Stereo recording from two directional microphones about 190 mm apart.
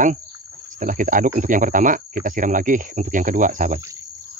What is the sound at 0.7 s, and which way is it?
Speech, 45° right (ahead or behind).